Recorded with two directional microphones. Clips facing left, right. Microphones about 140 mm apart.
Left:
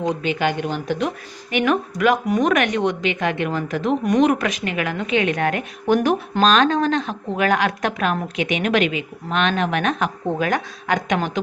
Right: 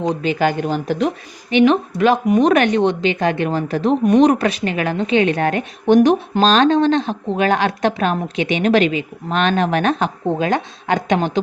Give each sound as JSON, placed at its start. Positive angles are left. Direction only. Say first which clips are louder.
{"t": 0.1, "sound": "a woman's voice", "louder": "right 5 dB", "side_deg": -35}